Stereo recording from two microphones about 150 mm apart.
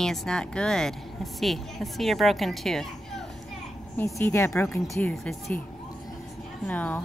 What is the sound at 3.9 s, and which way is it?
A woman's voice, 15° left (ahead or behind).